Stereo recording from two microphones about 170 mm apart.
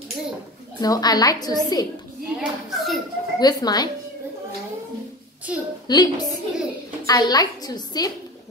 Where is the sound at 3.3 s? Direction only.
25° left (ahead or behind).